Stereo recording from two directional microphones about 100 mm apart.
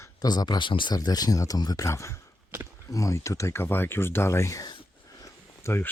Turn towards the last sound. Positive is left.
turn(degrees=25)  # may be behind; listen again after turning